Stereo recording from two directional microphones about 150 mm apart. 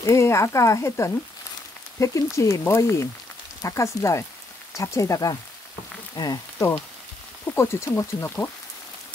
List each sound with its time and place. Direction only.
0.0 s speech: 20° left (ahead or behind)